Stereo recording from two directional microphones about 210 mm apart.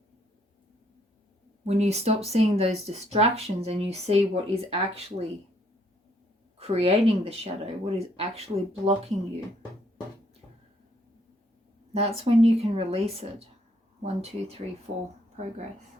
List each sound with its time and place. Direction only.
1.6 s speech: 30° right (ahead or behind)
6.6 s speech: 30° right (ahead or behind)
11.9 s speech: 30° right (ahead or behind)